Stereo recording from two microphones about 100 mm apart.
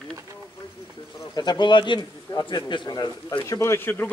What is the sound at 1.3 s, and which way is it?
A man's voice, 50° left (ahead or behind).